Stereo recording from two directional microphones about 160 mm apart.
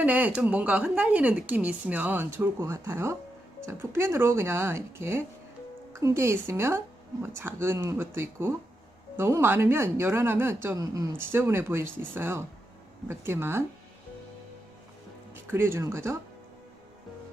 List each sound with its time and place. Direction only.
0.0 s speech: 10° right (ahead or behind)
15.4 s speech: 15° right (ahead or behind)